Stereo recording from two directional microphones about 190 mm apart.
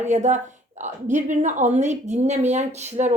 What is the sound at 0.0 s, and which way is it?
A woman's voice, 40° right (ahead or behind).